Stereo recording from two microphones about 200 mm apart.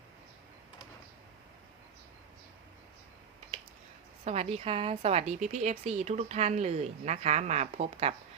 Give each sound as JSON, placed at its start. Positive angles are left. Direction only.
{"t": 4.2, "sound": "a woman's voice", "side_deg": -30}